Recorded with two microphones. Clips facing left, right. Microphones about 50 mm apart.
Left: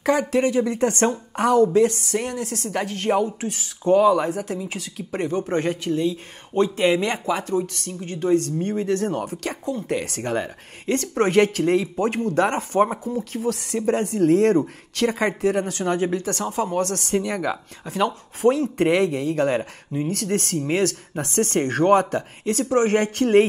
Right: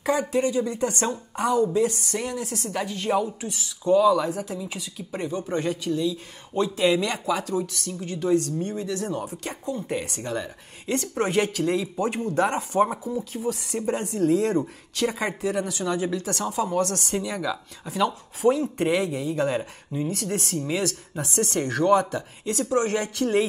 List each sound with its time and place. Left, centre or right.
0.0 s speech: left
5.5 s speech: left